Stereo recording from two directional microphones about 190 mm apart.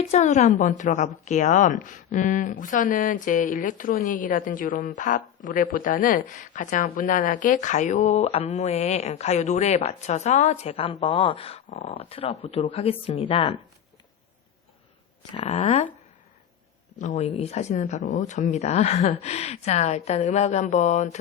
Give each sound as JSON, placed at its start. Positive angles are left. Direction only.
{"t": 0.1, "sound": "a woman's voice", "side_deg": 35}
{"t": 15.4, "sound": "a woman's voice", "side_deg": 35}
{"t": 17.0, "sound": "a woman's voice", "side_deg": 35}